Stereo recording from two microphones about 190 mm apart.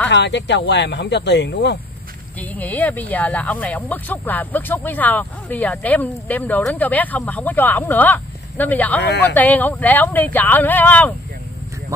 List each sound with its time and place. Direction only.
0.1 s speech: 65° left (ahead or behind)
2.5 s speech: 10° left (ahead or behind)